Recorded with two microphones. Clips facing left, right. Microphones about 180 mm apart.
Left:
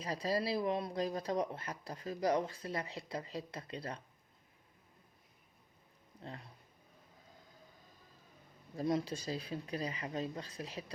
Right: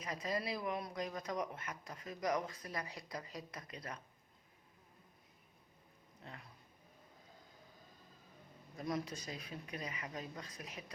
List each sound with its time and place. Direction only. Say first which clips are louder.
0.0 s speech: left 5 dB; 35° left (ahead or behind)
6.2 s speech: left 6 dB; 30° left (ahead or behind)
8.7 s speech: left 6 dB; 30° left (ahead or behind)